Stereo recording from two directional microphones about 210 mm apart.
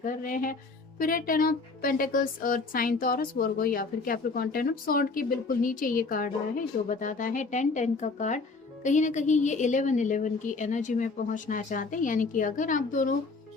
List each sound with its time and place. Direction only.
0.0 s speech: 40° left (ahead or behind)